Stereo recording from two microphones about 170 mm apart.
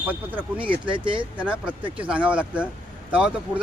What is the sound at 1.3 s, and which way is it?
Speech, 10° right (ahead or behind).